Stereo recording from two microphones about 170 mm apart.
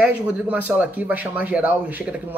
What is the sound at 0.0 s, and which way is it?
Speech, 10° right (ahead or behind).